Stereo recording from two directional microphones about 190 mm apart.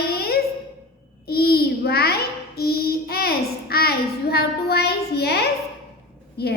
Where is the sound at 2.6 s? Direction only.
55° left (ahead or behind).